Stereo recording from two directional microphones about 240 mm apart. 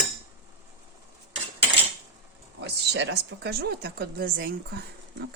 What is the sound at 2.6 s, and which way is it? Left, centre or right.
Speech, right.